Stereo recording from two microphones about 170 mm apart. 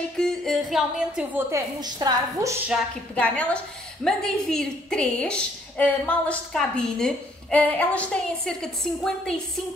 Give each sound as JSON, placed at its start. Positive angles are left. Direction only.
{"t": 0.2, "sound": "a sound", "side_deg": 0}
{"t": 1.5, "sound": "a woman's voice", "side_deg": -20}
{"t": 3.2, "sound": "a woman's voice", "side_deg": 5}